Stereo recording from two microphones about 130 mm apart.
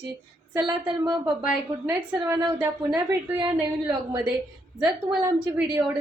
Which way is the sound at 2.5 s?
5° right (ahead or behind).